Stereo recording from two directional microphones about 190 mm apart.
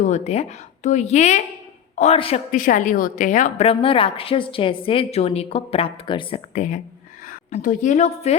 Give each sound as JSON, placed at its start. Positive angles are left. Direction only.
{"t": 0.0, "sound": "a woman's voice", "side_deg": 35}